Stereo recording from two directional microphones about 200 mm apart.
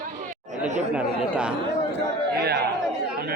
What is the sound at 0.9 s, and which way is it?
Speech, 5° right (ahead or behind).